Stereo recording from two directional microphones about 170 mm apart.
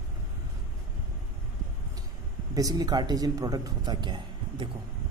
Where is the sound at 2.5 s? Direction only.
20° right (ahead or behind).